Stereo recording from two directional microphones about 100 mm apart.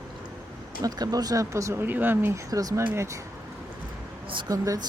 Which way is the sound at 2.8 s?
25° right (ahead or behind).